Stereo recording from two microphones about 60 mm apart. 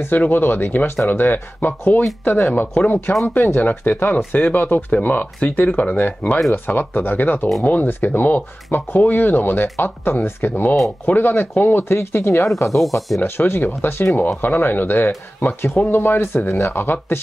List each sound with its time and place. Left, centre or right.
0.0 s speech: left
13.2 s speech: left